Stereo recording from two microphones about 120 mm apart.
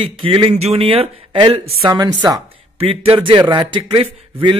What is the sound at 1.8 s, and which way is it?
Speech, 35° right (ahead or behind).